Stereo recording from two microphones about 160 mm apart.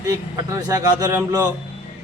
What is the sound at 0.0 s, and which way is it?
A man's voice, 20° right (ahead or behind).